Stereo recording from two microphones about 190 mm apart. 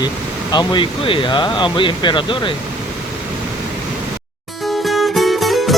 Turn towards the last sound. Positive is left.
turn(degrees=0)  # may be behind; listen again after turning